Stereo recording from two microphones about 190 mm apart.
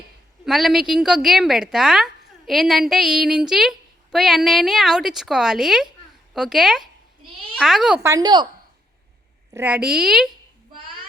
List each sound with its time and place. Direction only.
0.4 s a woman's voice: centre (ahead or behind)
8.1 s speech: 20° right (ahead or behind)
9.5 s a woman's voice: 10° right (ahead or behind)